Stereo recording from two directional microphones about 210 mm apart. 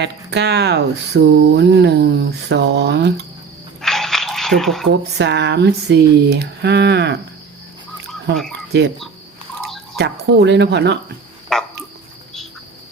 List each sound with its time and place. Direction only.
0.0 s speech: 55° right (ahead or behind)
3.8 s a sound: centre (ahead or behind)
4.9 s speech: 55° right (ahead or behind)
10.0 s speech: 55° right (ahead or behind)
11.5 s frog: centre (ahead or behind)